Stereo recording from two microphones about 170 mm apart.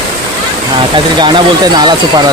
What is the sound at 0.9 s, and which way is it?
Speech, 25° right (ahead or behind).